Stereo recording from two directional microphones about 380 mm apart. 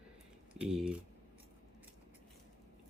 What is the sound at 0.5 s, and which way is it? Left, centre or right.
Speech, centre.